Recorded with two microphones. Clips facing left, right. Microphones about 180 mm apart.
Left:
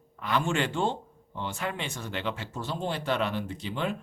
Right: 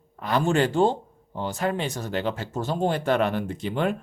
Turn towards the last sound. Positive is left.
turn(degrees=-55)  # may be behind; listen again after turning